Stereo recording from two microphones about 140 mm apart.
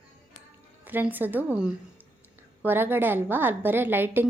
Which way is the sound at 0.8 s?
15° right (ahead or behind).